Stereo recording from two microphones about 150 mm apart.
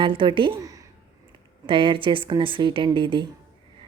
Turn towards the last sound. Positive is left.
turn(degrees=-35)  # may be behind; listen again after turning